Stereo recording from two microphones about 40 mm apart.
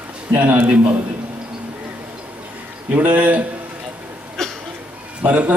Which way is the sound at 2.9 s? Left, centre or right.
Right.